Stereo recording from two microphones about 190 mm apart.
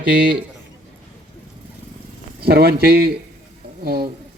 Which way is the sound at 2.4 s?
55° right (ahead or behind).